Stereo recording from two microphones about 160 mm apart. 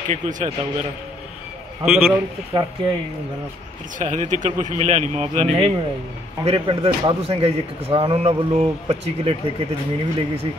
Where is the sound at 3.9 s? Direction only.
50° right (ahead or behind); by 8.3 s 35° right (ahead or behind).